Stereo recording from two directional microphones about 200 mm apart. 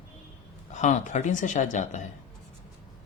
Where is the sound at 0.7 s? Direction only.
35° left (ahead or behind).